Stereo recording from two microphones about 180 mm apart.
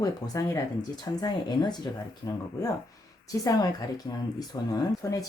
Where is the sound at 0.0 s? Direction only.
15° left (ahead or behind).